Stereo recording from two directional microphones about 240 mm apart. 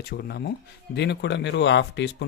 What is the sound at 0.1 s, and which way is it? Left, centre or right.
Speech, left.